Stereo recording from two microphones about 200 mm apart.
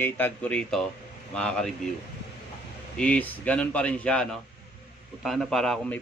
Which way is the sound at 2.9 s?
5° left (ahead or behind).